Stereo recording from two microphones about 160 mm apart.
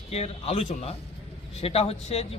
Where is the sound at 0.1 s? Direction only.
40° left (ahead or behind).